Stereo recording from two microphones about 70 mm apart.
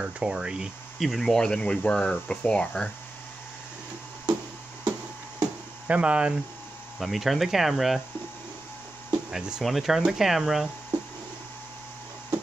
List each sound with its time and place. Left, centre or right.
0.0 s speech: centre
0.9 s speech: centre
5.9 s speech: centre
7.0 s speech: centre
9.3 s speech: centre